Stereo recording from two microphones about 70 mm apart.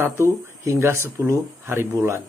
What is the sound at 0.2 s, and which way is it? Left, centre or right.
A man's voice, right.